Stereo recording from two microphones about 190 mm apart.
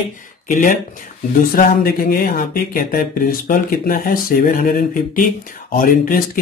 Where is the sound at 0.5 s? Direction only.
45° left (ahead or behind).